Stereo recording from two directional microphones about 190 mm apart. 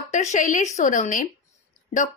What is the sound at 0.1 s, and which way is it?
A woman's voice, 40° left (ahead or behind).